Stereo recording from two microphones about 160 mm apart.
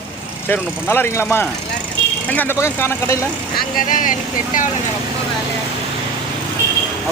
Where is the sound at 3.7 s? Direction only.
55° left (ahead or behind).